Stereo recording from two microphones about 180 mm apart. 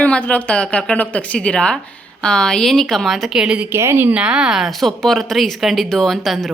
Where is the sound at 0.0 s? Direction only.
10° left (ahead or behind).